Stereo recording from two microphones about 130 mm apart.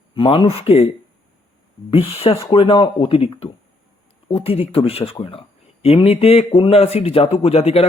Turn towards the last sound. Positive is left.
turn(degrees=50)  # may be behind; listen again after turning